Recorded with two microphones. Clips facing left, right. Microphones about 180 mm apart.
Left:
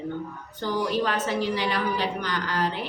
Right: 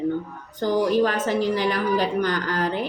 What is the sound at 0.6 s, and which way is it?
Speech, 45° right (ahead or behind).